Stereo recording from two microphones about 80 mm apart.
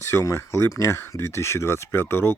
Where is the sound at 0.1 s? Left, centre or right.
Left.